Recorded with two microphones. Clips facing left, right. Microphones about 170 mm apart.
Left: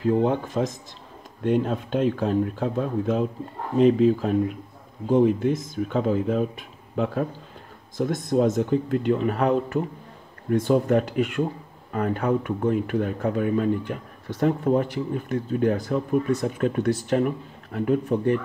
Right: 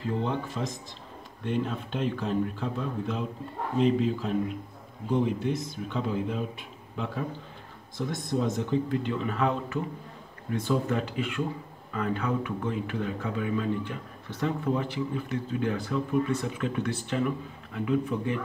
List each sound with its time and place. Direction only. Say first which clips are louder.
0.0 s speech: left 8 dB; 50° left (ahead or behind)
8.0 s speech: left 7 dB; 45° left (ahead or behind)